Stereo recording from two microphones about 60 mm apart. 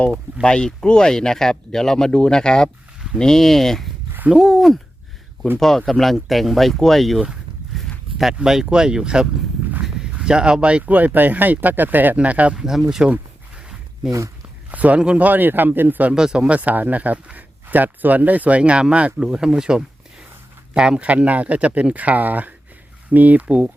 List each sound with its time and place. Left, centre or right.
0.4 s speech: centre
7.7 s a sound: centre
8.4 s speech: centre
12.5 s speech: centre
14.7 s speech: right
15.3 s speech: right
16.1 s speech: centre
16.6 s speech: right